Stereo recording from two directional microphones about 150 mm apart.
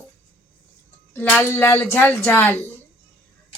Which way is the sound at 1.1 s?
15° left (ahead or behind).